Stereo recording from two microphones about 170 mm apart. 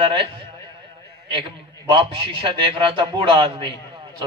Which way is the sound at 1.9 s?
30° right (ahead or behind).